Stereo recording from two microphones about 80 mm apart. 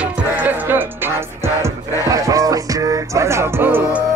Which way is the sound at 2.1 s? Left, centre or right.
Right.